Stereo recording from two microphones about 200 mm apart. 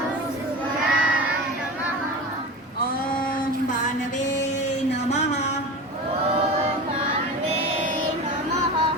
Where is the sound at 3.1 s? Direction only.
45° left (ahead or behind).